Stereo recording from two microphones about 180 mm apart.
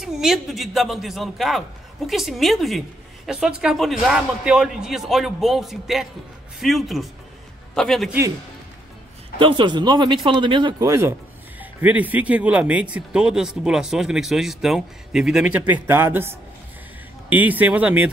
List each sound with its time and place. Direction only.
0.0 s a man's voice: centre (ahead or behind)
9.4 s speech: 25° right (ahead or behind); by 18.1 s 10° right (ahead or behind)